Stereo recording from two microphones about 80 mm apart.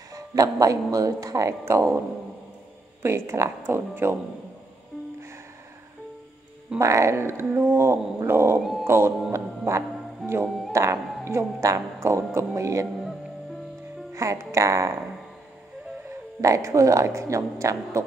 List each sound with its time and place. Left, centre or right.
0.1 s music: right
0.9 s speech: right
3.0 s a woman's voice: right
6.8 s a woman's voice: right
8.8 s music: right
10.7 s a woman's voice: right
14.1 s a woman's voice: right
16.1 s a woman's voice: right